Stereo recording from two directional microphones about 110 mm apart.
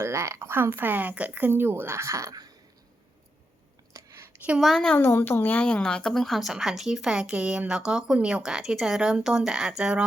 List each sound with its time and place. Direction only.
0.0 s speech: 25° right (ahead or behind)
3.9 s a sound: 25° right (ahead or behind)
4.6 s a woman's voice: 5° left (ahead or behind)
4.9 s a woman's voice: 20° left (ahead or behind); by 10.0 s 5° right (ahead or behind)